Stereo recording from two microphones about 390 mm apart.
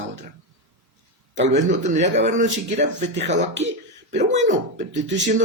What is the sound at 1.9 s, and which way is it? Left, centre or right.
Speech, centre.